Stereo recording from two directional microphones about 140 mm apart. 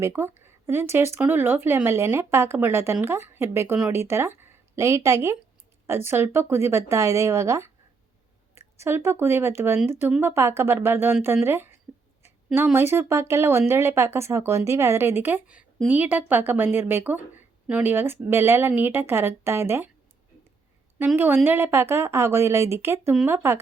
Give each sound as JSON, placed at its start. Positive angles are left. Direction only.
{"t": 0.0, "sound": "a woman's voice", "side_deg": -15}
{"t": 12.7, "sound": "a woman's voice", "side_deg": -15}
{"t": 21.2, "sound": "a woman's voice", "side_deg": -15}